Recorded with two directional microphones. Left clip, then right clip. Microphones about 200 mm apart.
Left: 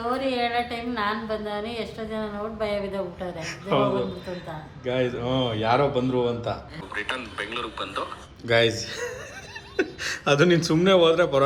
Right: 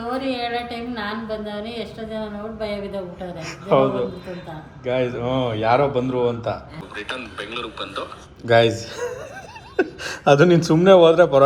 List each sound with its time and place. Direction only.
0.0 s a woman's voice: centre (ahead or behind)
6.9 s a woman's voice: centre (ahead or behind)
8.4 s a man's voice: 10° left (ahead or behind)